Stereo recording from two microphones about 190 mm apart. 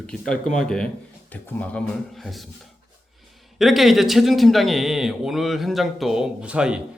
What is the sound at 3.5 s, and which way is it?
A man's voice, centre (ahead or behind).